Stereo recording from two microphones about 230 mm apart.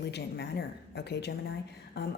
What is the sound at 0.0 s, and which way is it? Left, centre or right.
Speech, left.